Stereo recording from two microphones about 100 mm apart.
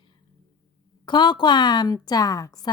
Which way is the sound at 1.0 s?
50° left (ahead or behind).